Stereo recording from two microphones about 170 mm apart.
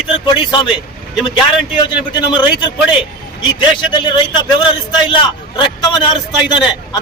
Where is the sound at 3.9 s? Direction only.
25° left (ahead or behind).